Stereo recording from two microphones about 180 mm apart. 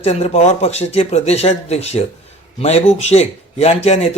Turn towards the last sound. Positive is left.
turn(degrees=35)  # may be behind; listen again after turning